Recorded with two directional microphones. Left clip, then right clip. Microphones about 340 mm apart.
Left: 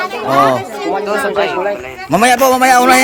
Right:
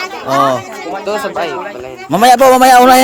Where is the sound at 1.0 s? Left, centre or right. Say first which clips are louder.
Left 1 dB; right.